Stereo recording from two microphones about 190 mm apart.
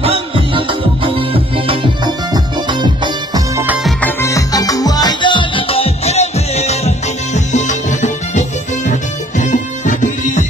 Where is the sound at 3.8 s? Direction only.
10° left (ahead or behind).